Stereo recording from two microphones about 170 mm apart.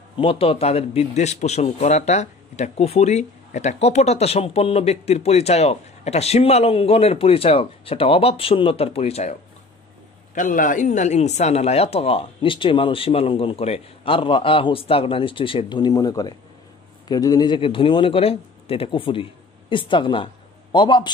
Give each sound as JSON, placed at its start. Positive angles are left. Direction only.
{"t": 0.2, "sound": "a man's voice", "side_deg": 35}
{"t": 10.3, "sound": "a man's voice", "side_deg": 50}